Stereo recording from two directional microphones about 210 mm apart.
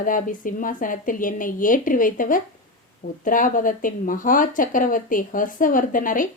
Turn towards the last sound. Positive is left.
turn(degrees=40)  # may be behind; listen again after turning